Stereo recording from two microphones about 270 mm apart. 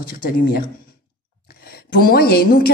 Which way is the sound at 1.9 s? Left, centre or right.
Left.